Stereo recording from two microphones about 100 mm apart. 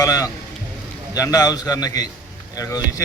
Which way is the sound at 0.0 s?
35° left (ahead or behind).